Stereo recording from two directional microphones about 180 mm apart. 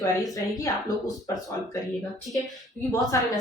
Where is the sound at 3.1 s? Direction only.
15° left (ahead or behind).